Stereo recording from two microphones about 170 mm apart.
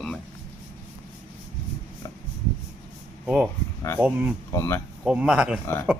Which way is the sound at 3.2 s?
5° right (ahead or behind).